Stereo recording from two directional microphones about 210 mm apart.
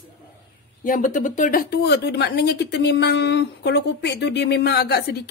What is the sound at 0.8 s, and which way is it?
Speech, 40° left (ahead or behind).